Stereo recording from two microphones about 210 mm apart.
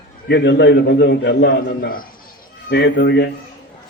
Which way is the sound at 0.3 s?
55° left (ahead or behind).